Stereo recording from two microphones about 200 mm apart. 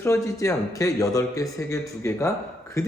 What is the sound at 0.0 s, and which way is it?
A man's voice, 15° left (ahead or behind).